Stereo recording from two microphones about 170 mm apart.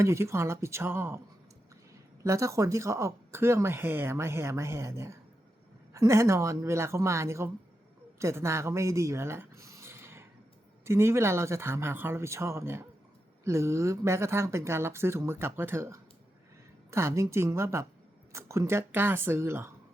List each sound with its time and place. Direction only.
0.0 s speech: 15° right (ahead or behind)
2.2 s speech: 20° right (ahead or behind)